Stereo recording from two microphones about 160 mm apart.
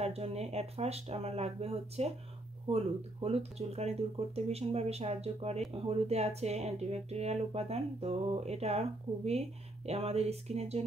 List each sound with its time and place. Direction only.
0.0 s speech: 40° right (ahead or behind)